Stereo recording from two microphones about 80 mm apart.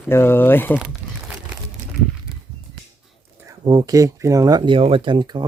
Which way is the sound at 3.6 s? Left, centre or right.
Right.